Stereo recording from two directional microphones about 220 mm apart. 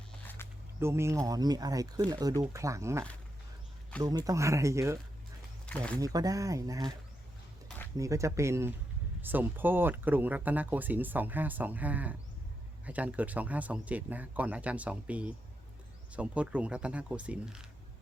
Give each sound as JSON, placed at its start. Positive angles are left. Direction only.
{"t": 0.4, "sound": "a sound", "side_deg": 10}
{"t": 0.8, "sound": "speech", "side_deg": -10}
{"t": 4.0, "sound": "speech", "side_deg": -15}
{"t": 5.6, "sound": "speech", "side_deg": 5}
{"t": 6.0, "sound": "speech", "side_deg": -15}
{"t": 7.9, "sound": "speech", "side_deg": -15}